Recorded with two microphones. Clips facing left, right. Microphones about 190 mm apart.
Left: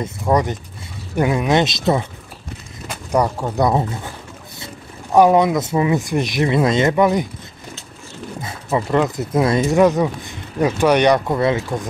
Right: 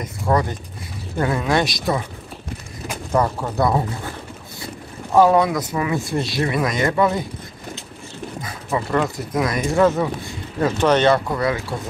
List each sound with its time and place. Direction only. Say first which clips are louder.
0.0 s speech: left 2 dB; 20° left (ahead or behind)
3.1 s speech: left 2 dB; 20° left (ahead or behind)
5.1 s speech: left 2 dB; 20° left (ahead or behind)
8.4 s speech: left 3 dB; 25° left (ahead or behind)